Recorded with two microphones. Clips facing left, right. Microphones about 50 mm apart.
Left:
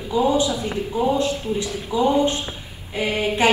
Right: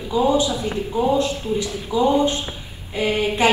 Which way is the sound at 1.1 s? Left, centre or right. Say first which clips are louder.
Right 1 dB; left.